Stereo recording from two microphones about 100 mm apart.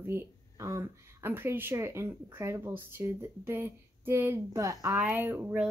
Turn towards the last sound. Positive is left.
turn(degrees=-20)  # may be behind; listen again after turning